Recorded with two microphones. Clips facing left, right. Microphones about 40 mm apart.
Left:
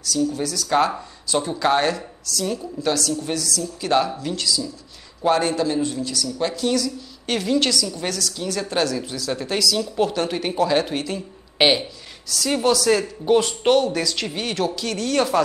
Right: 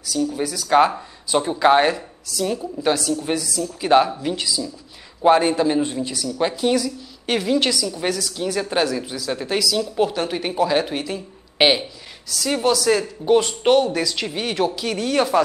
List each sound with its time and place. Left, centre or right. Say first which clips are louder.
0.0 s a man's voice: even; centre